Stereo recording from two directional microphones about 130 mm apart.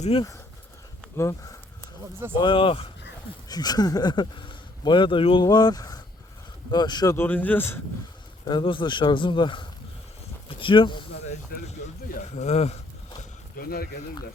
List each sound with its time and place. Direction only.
0.0 s speech: 45° left (ahead or behind)
1.1 s speech: 20° left (ahead or behind)
2.1 s speech: 15° right (ahead or behind)
2.4 s speech: 40° left (ahead or behind)
3.5 s speech: 30° left (ahead or behind)
7.2 s speech: 15° left (ahead or behind)
8.4 s speech: 40° left (ahead or behind)
12.0 s speech: 65° left (ahead or behind)